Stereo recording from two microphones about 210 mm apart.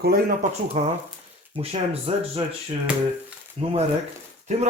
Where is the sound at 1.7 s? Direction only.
30° right (ahead or behind).